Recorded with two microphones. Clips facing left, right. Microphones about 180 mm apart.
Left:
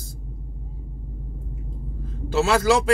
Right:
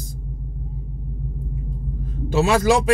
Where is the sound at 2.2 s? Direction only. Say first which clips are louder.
Right 2 dB; 15° right (ahead or behind).